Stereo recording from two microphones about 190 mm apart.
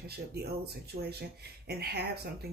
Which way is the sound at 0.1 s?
55° right (ahead or behind).